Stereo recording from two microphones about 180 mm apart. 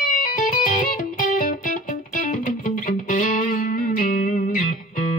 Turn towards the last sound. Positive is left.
turn(degrees=45)  # may be behind; listen again after turning